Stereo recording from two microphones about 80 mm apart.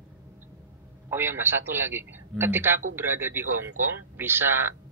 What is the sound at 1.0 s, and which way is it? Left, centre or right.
A man's voice, right.